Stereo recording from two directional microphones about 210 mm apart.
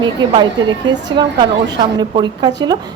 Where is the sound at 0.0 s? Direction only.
20° right (ahead or behind).